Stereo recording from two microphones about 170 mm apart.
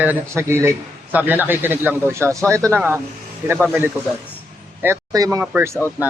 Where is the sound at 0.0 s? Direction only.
10° right (ahead or behind).